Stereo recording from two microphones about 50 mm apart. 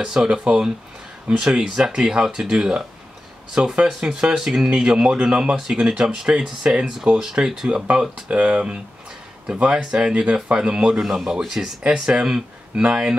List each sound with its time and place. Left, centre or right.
0.0 s speech: centre
11.0 s speech: centre
11.8 s speech: centre